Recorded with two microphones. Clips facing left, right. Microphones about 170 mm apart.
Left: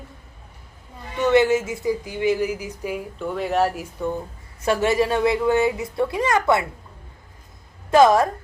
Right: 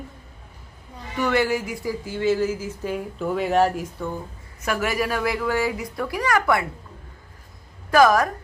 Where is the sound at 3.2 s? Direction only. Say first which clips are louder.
Right 2 dB; centre (ahead or behind).